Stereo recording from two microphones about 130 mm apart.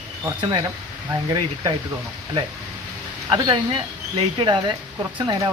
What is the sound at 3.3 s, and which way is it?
Speech, 40° right (ahead or behind).